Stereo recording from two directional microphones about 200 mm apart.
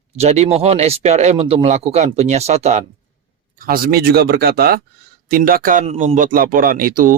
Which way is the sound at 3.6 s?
50° right (ahead or behind).